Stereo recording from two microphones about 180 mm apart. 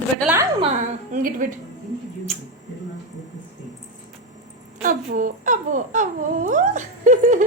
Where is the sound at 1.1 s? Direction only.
50° right (ahead or behind).